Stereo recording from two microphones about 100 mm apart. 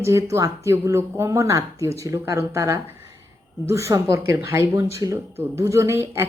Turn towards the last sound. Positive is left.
turn(degrees=-25)  # may be behind; listen again after turning